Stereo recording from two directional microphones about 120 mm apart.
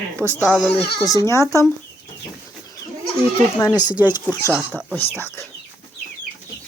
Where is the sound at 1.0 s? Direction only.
25° left (ahead or behind).